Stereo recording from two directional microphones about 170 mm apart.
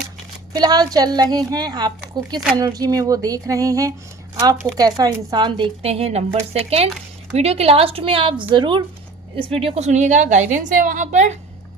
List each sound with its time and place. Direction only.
0.5 s a woman's voice: 25° right (ahead or behind); by 11.3 s 45° right (ahead or behind)